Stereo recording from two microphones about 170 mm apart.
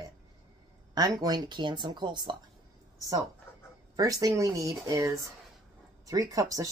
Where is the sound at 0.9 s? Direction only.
25° right (ahead or behind).